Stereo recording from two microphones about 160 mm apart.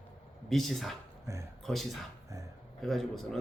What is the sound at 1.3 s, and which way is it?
Speech, 20° right (ahead or behind).